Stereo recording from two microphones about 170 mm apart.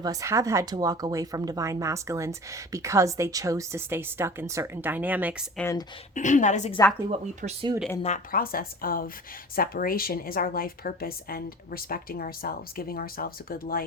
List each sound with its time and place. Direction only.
0.0 s speech: 20° right (ahead or behind)
6.1 s a woman's voice: 45° left (ahead or behind)
7.1 s speech: 30° right (ahead or behind)
8.0 s a woman's voice: 50° left (ahead or behind)